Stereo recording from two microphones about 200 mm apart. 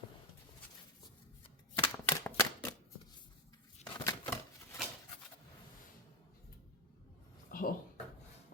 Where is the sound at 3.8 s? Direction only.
15° left (ahead or behind).